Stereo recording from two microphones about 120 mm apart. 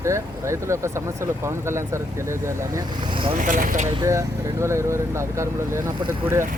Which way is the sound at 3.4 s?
90° right.